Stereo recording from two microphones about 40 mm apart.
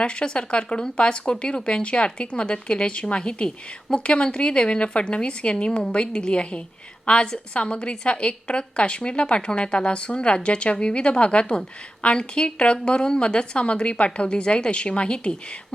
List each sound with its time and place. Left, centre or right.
0.0 s speech: left